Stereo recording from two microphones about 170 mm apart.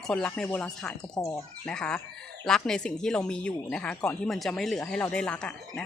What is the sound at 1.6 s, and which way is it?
Speech, 5° left (ahead or behind).